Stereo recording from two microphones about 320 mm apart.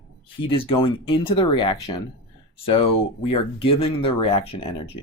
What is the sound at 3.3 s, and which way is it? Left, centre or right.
Speech, centre.